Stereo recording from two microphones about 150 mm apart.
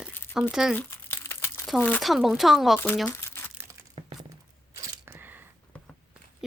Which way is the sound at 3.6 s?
15° right (ahead or behind).